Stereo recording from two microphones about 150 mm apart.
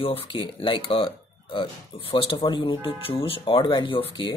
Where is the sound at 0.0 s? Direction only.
35° left (ahead or behind).